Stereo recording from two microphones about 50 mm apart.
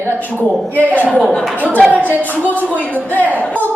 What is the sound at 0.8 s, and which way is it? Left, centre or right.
Speech, left.